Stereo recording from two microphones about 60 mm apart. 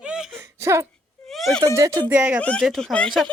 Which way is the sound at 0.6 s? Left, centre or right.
Right.